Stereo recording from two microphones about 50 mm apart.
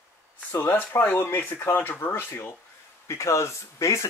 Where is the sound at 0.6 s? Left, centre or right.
Left.